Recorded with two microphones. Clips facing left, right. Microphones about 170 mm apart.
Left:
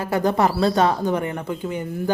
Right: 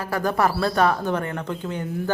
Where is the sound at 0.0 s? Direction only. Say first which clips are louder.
Left 3 dB; 20° left (ahead or behind).